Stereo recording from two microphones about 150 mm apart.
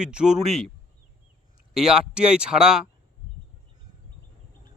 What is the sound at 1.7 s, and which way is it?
Speech, 5° right (ahead or behind).